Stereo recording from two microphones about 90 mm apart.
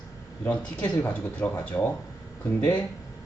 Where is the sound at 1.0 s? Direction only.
20° left (ahead or behind).